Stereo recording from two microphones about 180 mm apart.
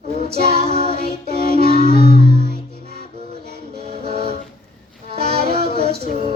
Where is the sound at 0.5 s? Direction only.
35° right (ahead or behind).